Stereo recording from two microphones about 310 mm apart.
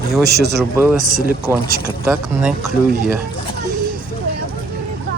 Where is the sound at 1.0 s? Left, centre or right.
Right.